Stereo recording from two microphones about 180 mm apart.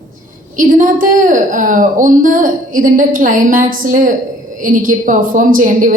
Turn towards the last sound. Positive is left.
turn(degrees=-45)  # may be behind; listen again after turning